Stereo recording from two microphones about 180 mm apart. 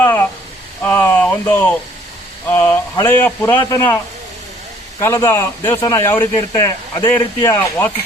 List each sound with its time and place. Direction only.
0.0 s a sound: 10° left (ahead or behind)
2.5 s a man's voice: 10° left (ahead or behind)
4.9 s a man's voice: 15° left (ahead or behind)